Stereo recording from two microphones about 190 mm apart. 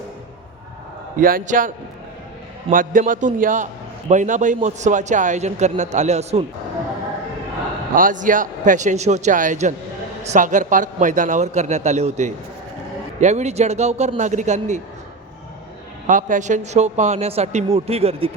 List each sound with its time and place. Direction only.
1.2 s a man's voice: 45° right (ahead or behind)
7.9 s a man's voice: 45° right (ahead or behind)
16.0 s a man's voice: 40° right (ahead or behind)